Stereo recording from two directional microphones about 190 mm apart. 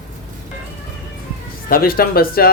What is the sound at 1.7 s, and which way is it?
Speech, 50° left (ahead or behind).